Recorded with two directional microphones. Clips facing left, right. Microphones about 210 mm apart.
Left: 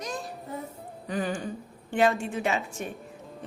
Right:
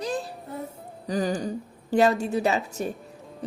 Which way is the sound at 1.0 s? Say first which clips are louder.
Right 4 dB; 40° right (ahead or behind).